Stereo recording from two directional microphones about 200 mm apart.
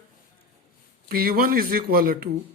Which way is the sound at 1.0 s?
45° right (ahead or behind).